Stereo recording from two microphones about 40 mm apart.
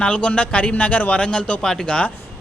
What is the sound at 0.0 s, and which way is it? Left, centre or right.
Speech, left.